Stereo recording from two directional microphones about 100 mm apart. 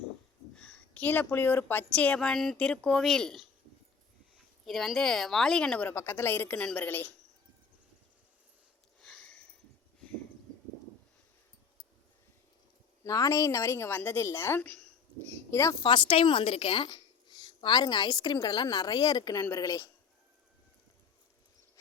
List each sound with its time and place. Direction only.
0.5 s a woman's voice: 10° left (ahead or behind)
4.6 s speech: centre (ahead or behind)
5.9 s a woman's voice: 25° left (ahead or behind)
6.6 s a woman's voice: 10° left (ahead or behind)
6.8 s a woman's voice: 20° left (ahead or behind)
9.0 s sniff: 5° left (ahead or behind)
13.1 s a woman's voice: 35° left (ahead or behind)
15.8 s a woman's voice: 55° left (ahead or behind); by 19.9 s 35° left (ahead or behind)